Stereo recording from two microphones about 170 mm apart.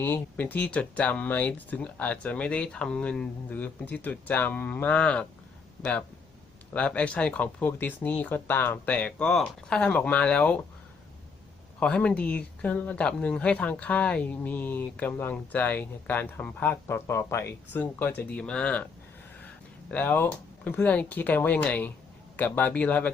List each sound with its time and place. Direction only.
0.0 s speech: 10° left (ahead or behind)
11.8 s speech: 5° left (ahead or behind)
19.9 s speech: 10° left (ahead or behind)